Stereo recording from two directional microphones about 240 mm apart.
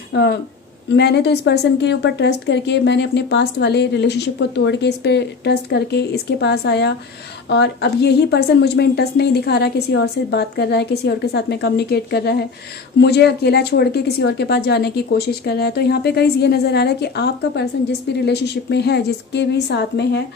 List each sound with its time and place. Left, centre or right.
0.1 s a woman's voice: left